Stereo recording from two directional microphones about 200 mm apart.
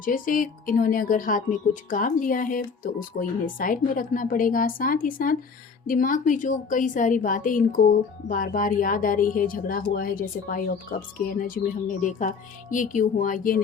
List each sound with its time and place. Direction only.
0.0 s a woman's voice: 45° left (ahead or behind)